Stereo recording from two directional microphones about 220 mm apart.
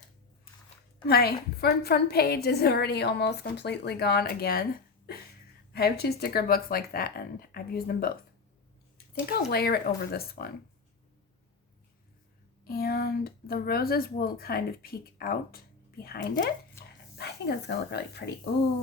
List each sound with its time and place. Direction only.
1.0 s a woman's voice: 45° left (ahead or behind)
5.7 s a woman's voice: 45° left (ahead or behind)
9.3 s a woman's voice: 45° left (ahead or behind)
12.6 s a woman's voice: 45° left (ahead or behind)